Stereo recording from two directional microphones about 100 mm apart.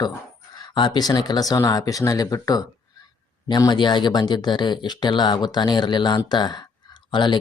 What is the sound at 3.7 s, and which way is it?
Speech, 50° left (ahead or behind).